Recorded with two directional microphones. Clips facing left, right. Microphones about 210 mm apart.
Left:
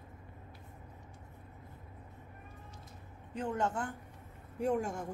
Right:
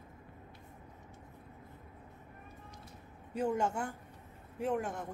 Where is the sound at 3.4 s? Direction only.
10° right (ahead or behind).